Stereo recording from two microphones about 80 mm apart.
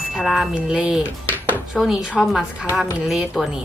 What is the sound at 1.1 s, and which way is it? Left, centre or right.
Speech, left.